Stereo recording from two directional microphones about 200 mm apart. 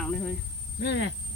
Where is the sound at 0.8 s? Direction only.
60° left (ahead or behind).